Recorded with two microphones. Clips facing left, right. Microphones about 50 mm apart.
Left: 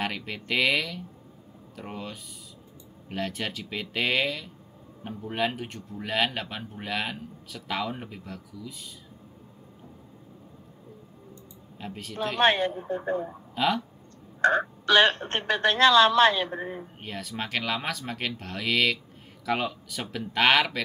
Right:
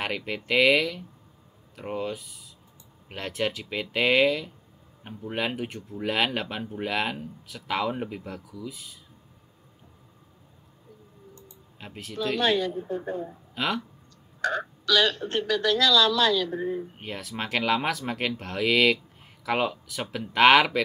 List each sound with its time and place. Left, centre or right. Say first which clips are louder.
0.0 s speech: right 1 dB; centre
11.8 s speech: left 2 dB; centre
12.2 s speech: left 1 dB; left
13.6 s speech: left 3 dB; centre
14.4 s speech: left 5 dB; left
17.0 s speech: right 1 dB; centre